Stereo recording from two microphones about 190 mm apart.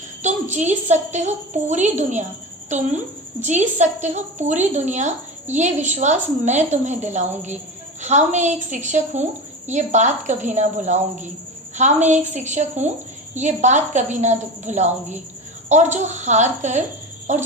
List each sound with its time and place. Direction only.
0.2 s a woman's voice: 40° right (ahead or behind)
3.4 s a woman's voice: 40° right (ahead or behind)